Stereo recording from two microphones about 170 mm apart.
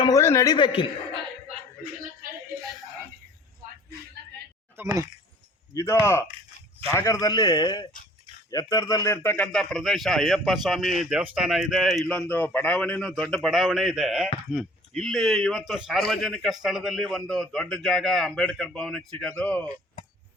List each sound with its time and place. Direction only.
0.0 s a man's voice: 20° left (ahead or behind)
4.8 s speech: 15° right (ahead or behind)
5.7 s a man's voice: 15° left (ahead or behind)